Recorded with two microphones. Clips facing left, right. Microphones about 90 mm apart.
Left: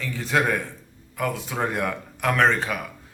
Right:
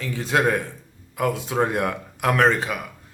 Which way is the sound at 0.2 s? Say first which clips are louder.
Right 2 dB; 20° right (ahead or behind).